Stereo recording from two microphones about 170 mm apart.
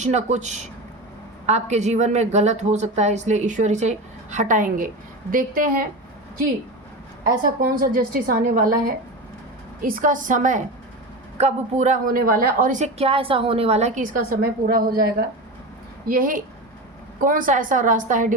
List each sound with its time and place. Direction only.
0.0 s a woman's voice: 45° right (ahead or behind)
7.3 s a woman's voice: 60° right (ahead or behind)
9.8 s a woman's voice: 55° right (ahead or behind)